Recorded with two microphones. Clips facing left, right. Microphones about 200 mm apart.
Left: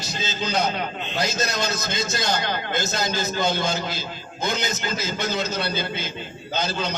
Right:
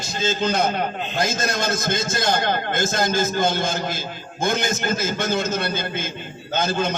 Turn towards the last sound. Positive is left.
turn(degrees=-50)  # may be behind; listen again after turning